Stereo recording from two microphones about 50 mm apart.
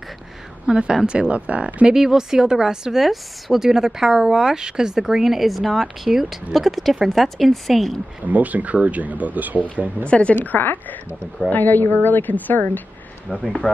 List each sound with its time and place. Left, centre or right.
0.7 s a woman's voice: centre
2.0 s a woman's voice: centre
8.2 s speech: right
10.0 s speech: left
10.3 s a woman's voice: left
13.3 s speech: centre